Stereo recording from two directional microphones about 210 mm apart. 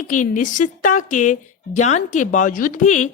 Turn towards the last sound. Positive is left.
turn(degrees=35)  # may be behind; listen again after turning